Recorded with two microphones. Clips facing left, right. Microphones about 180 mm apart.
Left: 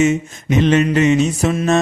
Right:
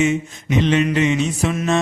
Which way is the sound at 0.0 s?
45° left (ahead or behind).